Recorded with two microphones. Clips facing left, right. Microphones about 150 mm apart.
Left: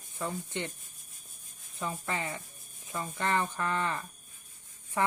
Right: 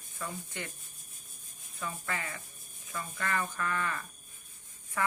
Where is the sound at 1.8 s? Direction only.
25° left (ahead or behind).